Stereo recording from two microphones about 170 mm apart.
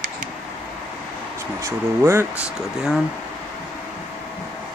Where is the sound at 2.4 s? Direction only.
5° right (ahead or behind).